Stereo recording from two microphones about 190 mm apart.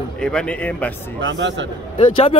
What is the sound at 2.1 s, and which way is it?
Speech, 30° left (ahead or behind).